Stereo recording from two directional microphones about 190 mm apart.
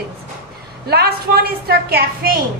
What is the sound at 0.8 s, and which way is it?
A woman's voice, 55° right (ahead or behind).